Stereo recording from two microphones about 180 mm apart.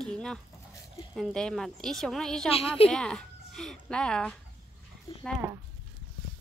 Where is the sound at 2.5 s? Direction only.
30° left (ahead or behind).